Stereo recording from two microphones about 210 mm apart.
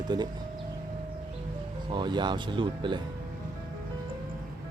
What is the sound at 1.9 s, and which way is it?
Speech, 20° right (ahead or behind).